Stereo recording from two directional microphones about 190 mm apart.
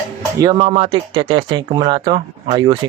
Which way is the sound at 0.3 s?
20° right (ahead or behind).